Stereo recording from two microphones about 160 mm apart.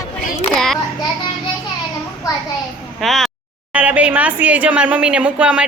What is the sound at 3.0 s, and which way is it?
A woman's voice, centre (ahead or behind).